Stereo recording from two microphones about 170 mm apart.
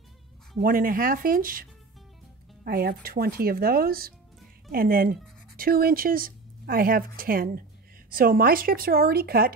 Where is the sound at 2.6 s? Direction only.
60° right (ahead or behind).